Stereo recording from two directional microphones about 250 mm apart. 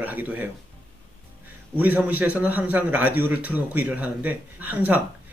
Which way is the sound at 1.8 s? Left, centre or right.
Centre.